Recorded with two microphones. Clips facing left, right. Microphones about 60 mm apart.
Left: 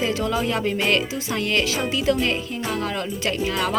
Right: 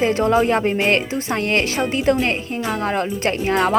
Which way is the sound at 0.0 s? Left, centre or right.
Right.